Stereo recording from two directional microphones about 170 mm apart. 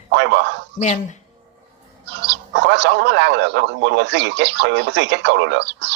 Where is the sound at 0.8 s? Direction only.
45° left (ahead or behind).